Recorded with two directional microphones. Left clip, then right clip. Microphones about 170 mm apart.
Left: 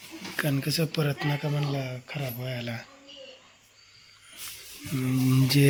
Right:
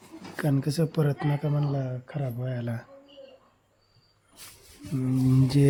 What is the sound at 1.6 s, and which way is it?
Speech, 45° right (ahead or behind).